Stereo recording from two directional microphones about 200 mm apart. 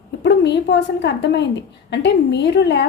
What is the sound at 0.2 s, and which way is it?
A woman's voice, 60° left (ahead or behind).